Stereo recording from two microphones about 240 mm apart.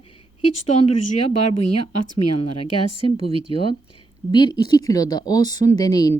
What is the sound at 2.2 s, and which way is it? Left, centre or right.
Speech, left.